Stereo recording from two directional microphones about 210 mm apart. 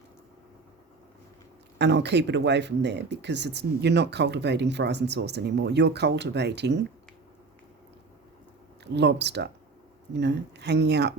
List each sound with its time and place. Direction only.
1.8 s speech: 55° right (ahead or behind)
8.8 s speech: 55° right (ahead or behind)